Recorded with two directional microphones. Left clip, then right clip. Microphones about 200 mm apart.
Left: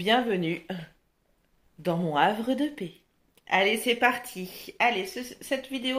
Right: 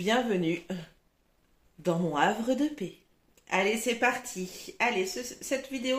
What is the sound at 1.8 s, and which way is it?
Speech, 40° left (ahead or behind).